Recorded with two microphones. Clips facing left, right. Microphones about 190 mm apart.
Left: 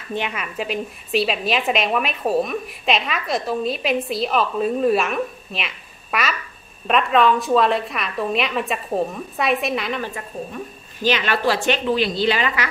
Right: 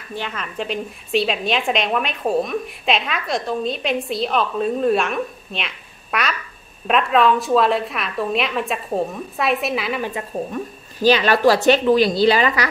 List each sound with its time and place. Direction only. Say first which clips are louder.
0.1 s a woman's voice: left 3 dB; 15° left (ahead or behind); by 10.0 s 5° right (ahead or behind)
11.0 s a woman's voice: right 5 dB; 35° right (ahead or behind)